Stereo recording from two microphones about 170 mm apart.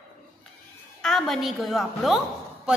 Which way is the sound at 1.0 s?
Centre (ahead or behind).